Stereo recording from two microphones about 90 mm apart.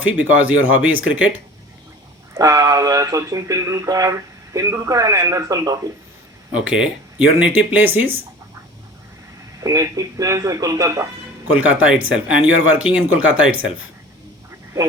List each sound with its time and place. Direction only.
0.0 s speech: 15° right (ahead or behind)
2.3 s speech: 40° right (ahead or behind)
6.5 s speech: 10° right (ahead or behind)
9.6 s speech: 35° right (ahead or behind)
11.5 s speech: 15° right (ahead or behind)